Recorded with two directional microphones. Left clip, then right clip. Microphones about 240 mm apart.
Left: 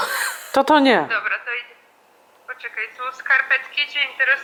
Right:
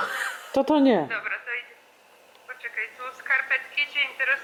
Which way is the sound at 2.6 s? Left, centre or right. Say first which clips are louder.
Left 3 dB; left.